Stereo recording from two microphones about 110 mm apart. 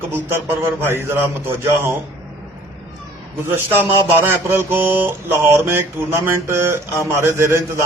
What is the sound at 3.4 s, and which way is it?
Speech, 20° right (ahead or behind).